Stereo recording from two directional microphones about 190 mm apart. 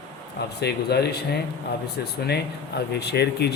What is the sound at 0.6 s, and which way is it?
Speech, 60° left (ahead or behind).